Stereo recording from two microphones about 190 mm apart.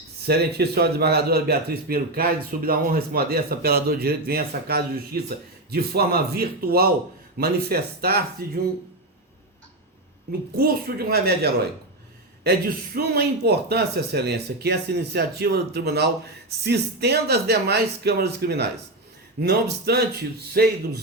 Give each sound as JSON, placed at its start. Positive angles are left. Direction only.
{"t": 0.2, "sound": "a man's voice", "side_deg": -60}
{"t": 10.6, "sound": "a man's voice", "side_deg": -55}